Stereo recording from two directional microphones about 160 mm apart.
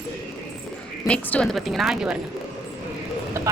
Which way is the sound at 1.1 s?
5° left (ahead or behind).